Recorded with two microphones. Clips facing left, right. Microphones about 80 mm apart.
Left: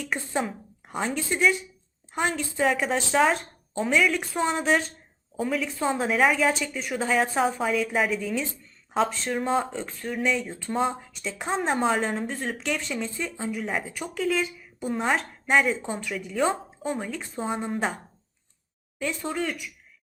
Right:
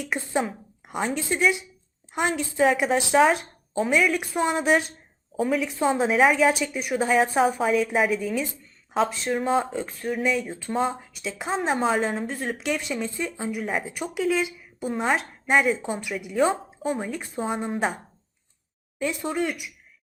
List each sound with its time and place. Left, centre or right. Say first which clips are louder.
0.0 s a woman's voice: right 2 dB; centre
5.6 s speech: right 3 dB; centre
13.6 s speech: right 2 dB; centre
13.8 s speech: right 2 dB; centre
17.1 s speech: right 2 dB; centre
17.3 s speech: right 1 dB; centre
19.2 s speech: right 3 dB; centre